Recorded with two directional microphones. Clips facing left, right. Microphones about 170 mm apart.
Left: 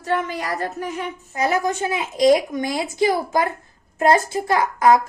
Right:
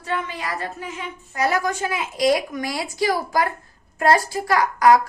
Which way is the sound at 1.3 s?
20° left (ahead or behind).